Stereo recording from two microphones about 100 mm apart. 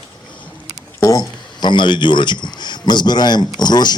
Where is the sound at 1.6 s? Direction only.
50° left (ahead or behind).